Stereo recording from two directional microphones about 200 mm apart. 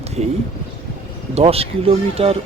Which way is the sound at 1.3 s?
30° right (ahead or behind).